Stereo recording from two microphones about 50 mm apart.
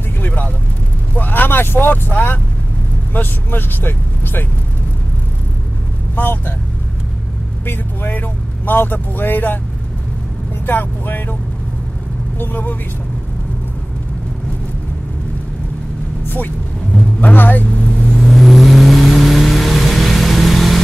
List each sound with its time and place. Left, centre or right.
0.2 s vehicle: left
3.1 s speech: left
6.1 s speech: left
7.6 s speech: left
10.7 s speech: left
12.4 s speech: left
16.3 s a sound: left
17.2 s speech: left
18.1 s vehicle: centre